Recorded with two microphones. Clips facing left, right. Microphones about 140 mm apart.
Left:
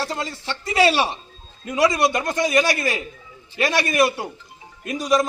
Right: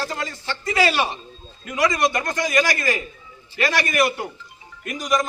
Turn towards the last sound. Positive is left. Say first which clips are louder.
# left 3 dB
turn(degrees=30)  # may be behind; listen again after turning